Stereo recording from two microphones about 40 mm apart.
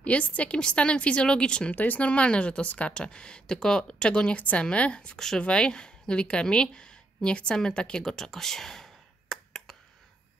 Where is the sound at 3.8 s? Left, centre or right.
Left.